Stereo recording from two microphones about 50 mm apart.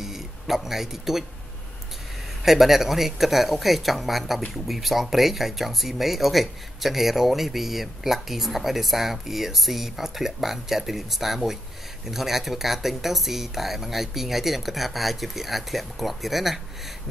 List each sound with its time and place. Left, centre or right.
0.0 s speech: centre
2.4 s speech: centre